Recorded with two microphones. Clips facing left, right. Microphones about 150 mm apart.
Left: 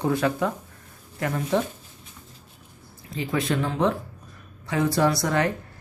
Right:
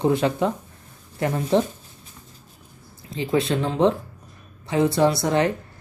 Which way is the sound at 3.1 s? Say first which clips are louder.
Right 3 dB; 25° right (ahead or behind).